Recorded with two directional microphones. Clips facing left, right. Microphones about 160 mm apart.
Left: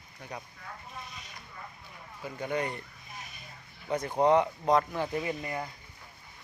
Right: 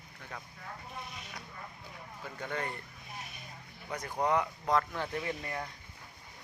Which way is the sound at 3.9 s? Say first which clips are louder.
Left 7 dB; 25° left (ahead or behind).